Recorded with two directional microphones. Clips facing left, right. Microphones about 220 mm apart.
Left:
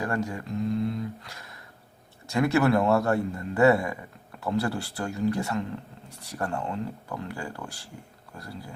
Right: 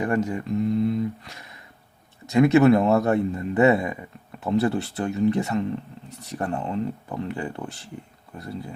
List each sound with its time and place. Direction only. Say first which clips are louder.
0.0 s a man's voice: right 5 dB; 20° right (ahead or behind)